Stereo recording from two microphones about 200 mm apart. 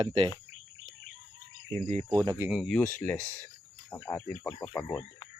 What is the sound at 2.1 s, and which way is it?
Speech, 20° right (ahead or behind).